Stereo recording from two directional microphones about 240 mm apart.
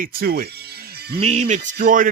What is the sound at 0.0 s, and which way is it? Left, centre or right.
Speech, right.